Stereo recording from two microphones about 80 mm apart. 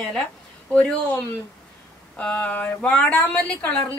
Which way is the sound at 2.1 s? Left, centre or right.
Centre.